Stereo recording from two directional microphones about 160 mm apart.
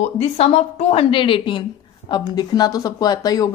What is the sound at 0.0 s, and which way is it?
A woman's voice, 40° left (ahead or behind).